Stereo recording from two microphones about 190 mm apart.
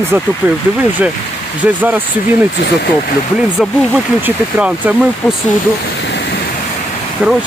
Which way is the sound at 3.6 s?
5° right (ahead or behind).